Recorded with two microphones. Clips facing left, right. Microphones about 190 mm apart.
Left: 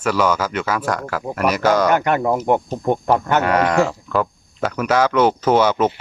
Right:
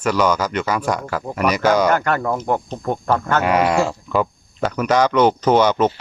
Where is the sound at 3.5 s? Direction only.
10° right (ahead or behind).